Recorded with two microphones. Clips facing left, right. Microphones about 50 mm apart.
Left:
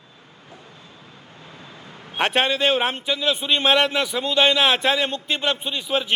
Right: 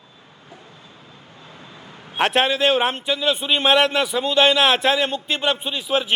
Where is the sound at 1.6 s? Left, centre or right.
Centre.